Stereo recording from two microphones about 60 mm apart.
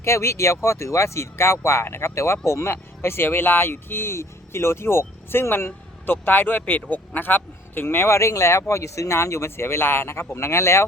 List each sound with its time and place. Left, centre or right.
0.0 s speech: left